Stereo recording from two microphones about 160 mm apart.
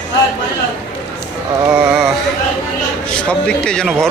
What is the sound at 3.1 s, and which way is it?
Speech, 5° left (ahead or behind).